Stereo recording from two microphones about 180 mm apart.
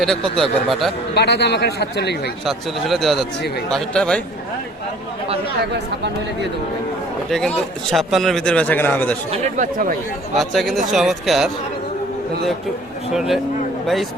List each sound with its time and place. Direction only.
0.0 s a man's voice: centre (ahead or behind)
1.1 s speech: 65° left (ahead or behind)
2.5 s a man's voice: centre (ahead or behind)
7.3 s a man's voice: 5° left (ahead or behind)
9.3 s speech: 40° right (ahead or behind)
10.3 s a man's voice: centre (ahead or behind)
13.1 s a man's voice: centre (ahead or behind)